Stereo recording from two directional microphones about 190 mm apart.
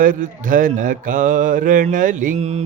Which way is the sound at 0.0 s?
45° right (ahead or behind).